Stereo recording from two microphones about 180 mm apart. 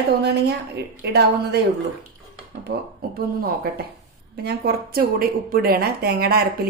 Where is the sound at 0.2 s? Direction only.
65° right (ahead or behind).